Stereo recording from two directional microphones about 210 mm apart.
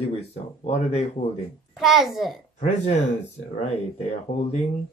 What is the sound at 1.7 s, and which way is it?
Speech, centre (ahead or behind).